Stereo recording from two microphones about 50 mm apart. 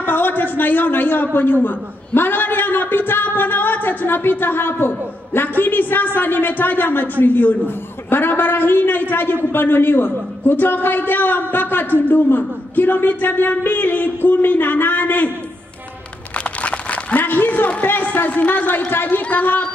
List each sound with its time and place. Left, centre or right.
0.0 s a man's voice: left
16.4 s a sound: left
17.8 s a woman's voice: left